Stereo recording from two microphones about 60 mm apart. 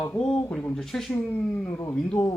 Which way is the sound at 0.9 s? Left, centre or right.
Centre.